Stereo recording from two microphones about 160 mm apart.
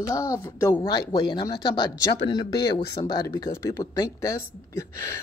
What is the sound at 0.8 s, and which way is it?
Speech, 25° left (ahead or behind).